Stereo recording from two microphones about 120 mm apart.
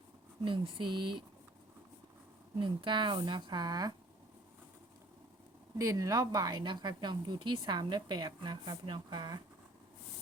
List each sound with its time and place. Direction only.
0.4 s speech: 45° right (ahead or behind)
2.6 s speech: 40° right (ahead or behind)
5.7 s speech: 25° right (ahead or behind)